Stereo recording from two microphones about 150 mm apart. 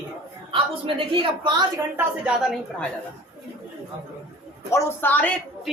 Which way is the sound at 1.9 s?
5° right (ahead or behind).